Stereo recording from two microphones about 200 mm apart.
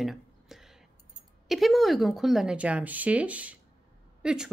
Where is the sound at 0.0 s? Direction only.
Centre (ahead or behind).